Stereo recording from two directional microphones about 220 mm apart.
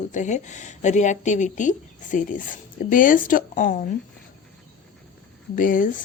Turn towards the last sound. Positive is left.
turn(degrees=35)  # may be behind; listen again after turning